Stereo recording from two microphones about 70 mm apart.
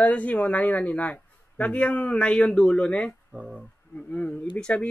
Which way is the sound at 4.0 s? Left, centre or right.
Centre.